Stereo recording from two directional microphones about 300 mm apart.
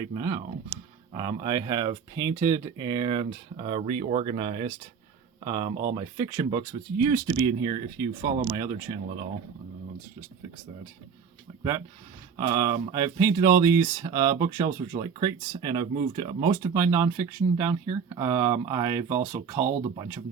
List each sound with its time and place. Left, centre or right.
0.1 s speech: centre
12.4 s speech: centre